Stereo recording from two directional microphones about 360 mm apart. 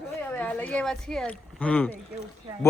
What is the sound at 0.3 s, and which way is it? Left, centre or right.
Speech, centre.